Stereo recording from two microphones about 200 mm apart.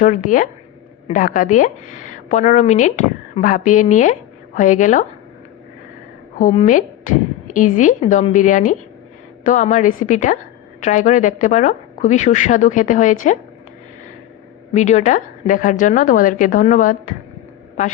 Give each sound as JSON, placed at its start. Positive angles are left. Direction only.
{"t": 0.0, "sound": "a woman's voice", "side_deg": 40}
{"t": 6.4, "sound": "a woman's voice", "side_deg": 35}
{"t": 14.7, "sound": "a woman's voice", "side_deg": 35}